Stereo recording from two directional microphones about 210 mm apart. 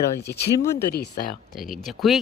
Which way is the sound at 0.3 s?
50° left (ahead or behind).